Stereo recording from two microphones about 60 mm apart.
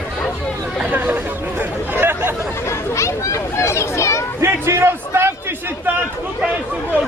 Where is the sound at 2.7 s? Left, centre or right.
Left.